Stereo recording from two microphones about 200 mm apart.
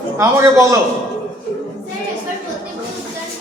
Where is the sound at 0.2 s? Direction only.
15° right (ahead or behind).